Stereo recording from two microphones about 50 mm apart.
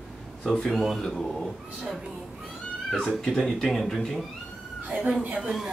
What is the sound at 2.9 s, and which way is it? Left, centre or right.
Speech, centre.